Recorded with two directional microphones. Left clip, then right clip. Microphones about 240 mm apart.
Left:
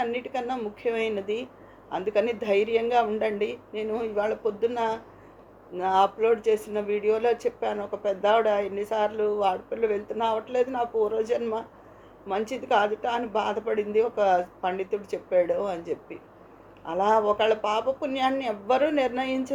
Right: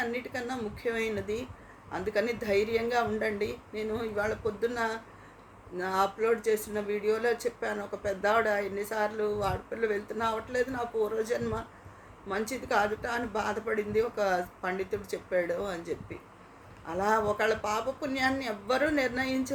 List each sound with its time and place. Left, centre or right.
0.0 s speech: centre